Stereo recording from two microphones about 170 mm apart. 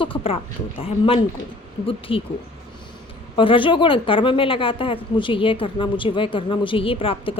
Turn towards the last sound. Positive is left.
turn(degrees=30)  # may be behind; listen again after turning